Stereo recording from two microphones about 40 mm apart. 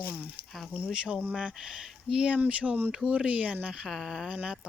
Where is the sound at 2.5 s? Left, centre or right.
Right.